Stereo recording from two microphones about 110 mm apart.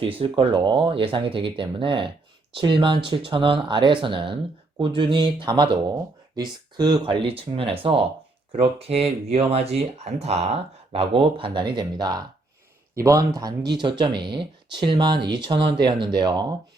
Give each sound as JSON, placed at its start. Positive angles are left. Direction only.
{"t": 0.0, "sound": "speech", "side_deg": -55}
{"t": 10.9, "sound": "speech", "side_deg": -50}
{"t": 13.0, "sound": "speech", "side_deg": -30}